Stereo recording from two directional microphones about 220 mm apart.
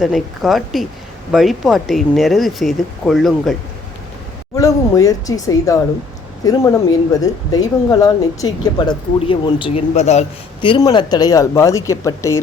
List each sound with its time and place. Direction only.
0.0 s speech: centre (ahead or behind)
4.5 s speech: 15° left (ahead or behind)